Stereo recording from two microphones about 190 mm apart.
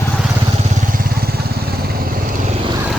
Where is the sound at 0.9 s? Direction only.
50° right (ahead or behind).